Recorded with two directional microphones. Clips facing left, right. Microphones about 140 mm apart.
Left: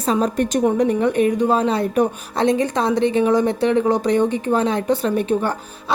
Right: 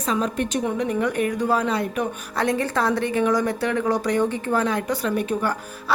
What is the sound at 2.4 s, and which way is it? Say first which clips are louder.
A woman's voice: left 4 dB; 20° left (ahead or behind).